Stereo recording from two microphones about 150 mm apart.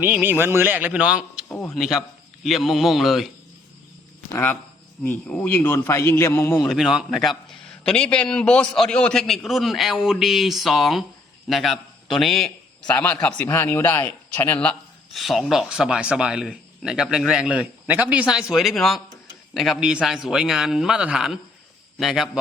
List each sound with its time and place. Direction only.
0.0 s a man's voice: 10° right (ahead or behind)
5.0 s a man's voice: 10° left (ahead or behind)
6.7 s a man's voice: centre (ahead or behind)